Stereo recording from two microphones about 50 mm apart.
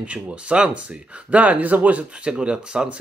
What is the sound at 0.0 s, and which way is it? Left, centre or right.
A man's voice, right.